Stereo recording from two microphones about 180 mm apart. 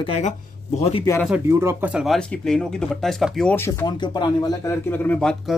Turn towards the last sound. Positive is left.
turn(degrees=5)  # may be behind; listen again after turning